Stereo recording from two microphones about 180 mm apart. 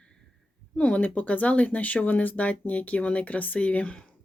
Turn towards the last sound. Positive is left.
turn(degrees=5)  # may be behind; listen again after turning